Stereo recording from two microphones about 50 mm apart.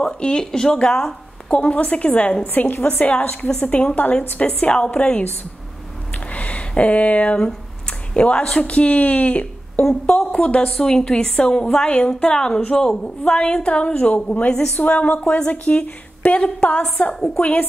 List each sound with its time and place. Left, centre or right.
0.0 s a woman's voice: centre
1.6 s a woman's voice: left
2.4 s a woman's voice: left
4.6 s a woman's voice: centre
9.8 s a woman's voice: centre
10.7 s a woman's voice: centre
17.1 s a woman's voice: centre
17.4 s a woman's voice: left